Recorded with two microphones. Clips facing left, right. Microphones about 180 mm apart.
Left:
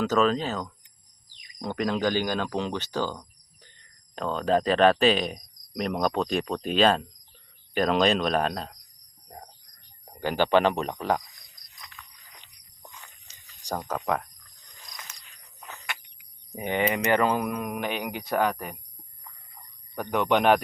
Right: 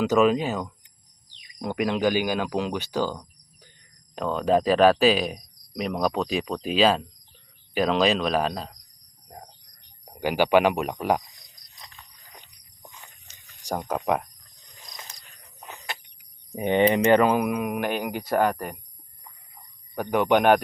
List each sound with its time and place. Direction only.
0.0 s speech: 10° right (ahead or behind)
10.2 s speech: 10° right (ahead or behind)
11.8 s a sound: 30° right (ahead or behind)
13.3 s a sound: 60° right (ahead or behind)
13.7 s speech: 15° right (ahead or behind)
14.9 s cricket: 35° right (ahead or behind)
16.6 s speech: 25° right (ahead or behind); by 18.8 s centre (ahead or behind)
20.0 s speech: 5° right (ahead or behind)